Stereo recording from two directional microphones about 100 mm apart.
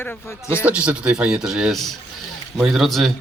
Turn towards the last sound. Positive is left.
turn(degrees=0)  # may be behind; listen again after turning